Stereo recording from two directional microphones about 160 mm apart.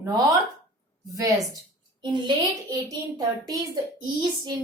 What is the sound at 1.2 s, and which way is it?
A woman's voice, 20° right (ahead or behind).